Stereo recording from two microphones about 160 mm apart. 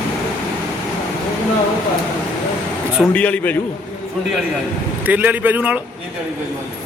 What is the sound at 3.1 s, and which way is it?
Speech, 10° left (ahead or behind).